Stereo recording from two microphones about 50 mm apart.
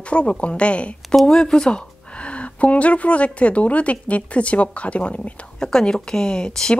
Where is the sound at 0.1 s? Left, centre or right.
Left.